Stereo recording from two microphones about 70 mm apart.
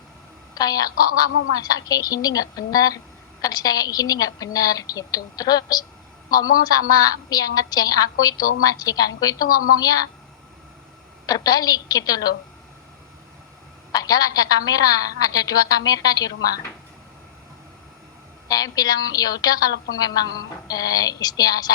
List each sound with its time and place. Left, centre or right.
0.5 s a woman's voice: left
11.3 s a woman's voice: left
13.9 s a woman's voice: left
18.4 s a woman's voice: left